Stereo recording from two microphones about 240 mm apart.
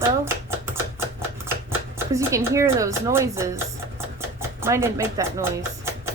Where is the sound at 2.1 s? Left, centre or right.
Centre.